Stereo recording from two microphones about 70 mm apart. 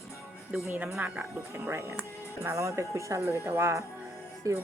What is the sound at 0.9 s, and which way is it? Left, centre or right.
Speech, centre.